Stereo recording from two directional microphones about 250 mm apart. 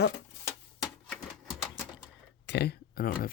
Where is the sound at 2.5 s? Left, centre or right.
Left.